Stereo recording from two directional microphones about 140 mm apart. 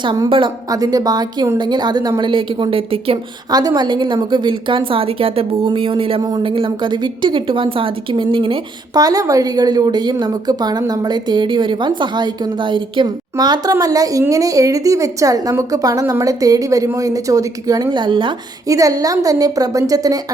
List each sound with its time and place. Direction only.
0.0 s a woman's voice: 35° right (ahead or behind)
0.7 s a woman's voice: 25° right (ahead or behind); by 3.2 s 40° right (ahead or behind)
3.5 s a woman's voice: 30° right (ahead or behind)
18.7 s speech: 25° right (ahead or behind)